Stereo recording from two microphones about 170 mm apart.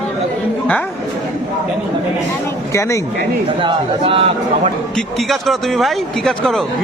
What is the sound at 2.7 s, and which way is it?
Speech, 15° left (ahead or behind).